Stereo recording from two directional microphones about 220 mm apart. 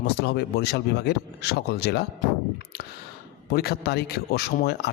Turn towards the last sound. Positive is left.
turn(degrees=45)  # may be behind; listen again after turning